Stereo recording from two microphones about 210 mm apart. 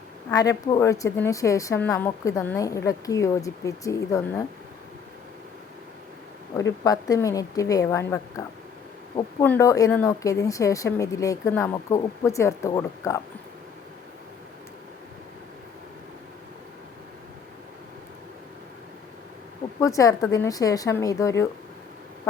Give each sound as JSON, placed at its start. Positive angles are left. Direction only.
{"t": 0.3, "sound": "a woman's voice", "side_deg": 15}
{"t": 6.8, "sound": "a woman's voice", "side_deg": 15}
{"t": 19.8, "sound": "a woman's voice", "side_deg": 15}